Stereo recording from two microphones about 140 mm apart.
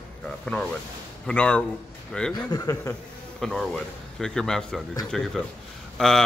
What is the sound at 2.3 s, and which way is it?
Speech, 25° left (ahead or behind).